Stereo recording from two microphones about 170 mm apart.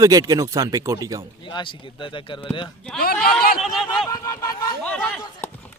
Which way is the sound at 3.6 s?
Centre (ahead or behind).